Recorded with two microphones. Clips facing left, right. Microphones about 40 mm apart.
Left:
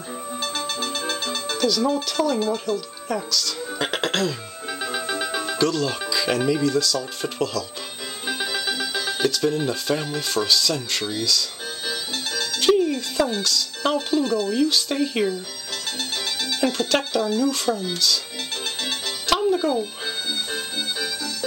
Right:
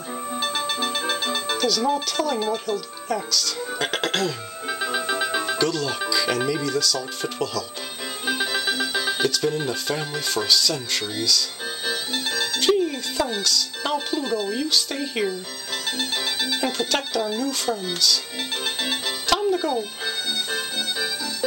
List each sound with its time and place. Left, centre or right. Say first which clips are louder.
0.4 s music: right 2 dB; centre
1.6 s speech: left 2 dB; centre
8.3 s music: right 2 dB; centre
9.3 s speech: left 1 dB; centre
11.8 s music: right 2 dB; centre
12.5 s music: left 2 dB; centre
13.4 s speech: left 1 dB; centre
14.2 s speech: left 4 dB; centre
14.7 s speech: left 2 dB; centre
16.0 s music: right 1 dB; centre
17.2 s speech: left 3 dB; centre
18.8 s music: right 1 dB; centre
19.2 s music: left 2 dB; centre